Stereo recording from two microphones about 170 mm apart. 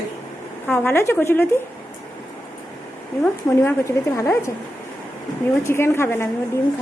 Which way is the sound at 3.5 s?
15° left (ahead or behind).